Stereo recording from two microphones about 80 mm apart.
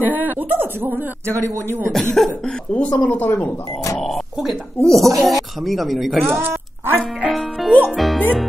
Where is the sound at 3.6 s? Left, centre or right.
Left.